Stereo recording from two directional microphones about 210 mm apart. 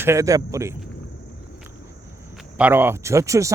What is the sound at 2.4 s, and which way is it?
Speech, 5° right (ahead or behind).